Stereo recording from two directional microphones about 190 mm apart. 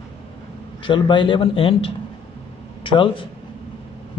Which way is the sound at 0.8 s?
25° left (ahead or behind).